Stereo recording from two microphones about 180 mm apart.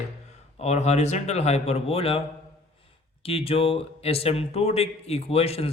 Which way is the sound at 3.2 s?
30° left (ahead or behind).